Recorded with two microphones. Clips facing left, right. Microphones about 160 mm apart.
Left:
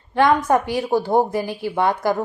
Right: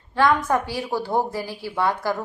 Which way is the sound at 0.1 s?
20° left (ahead or behind).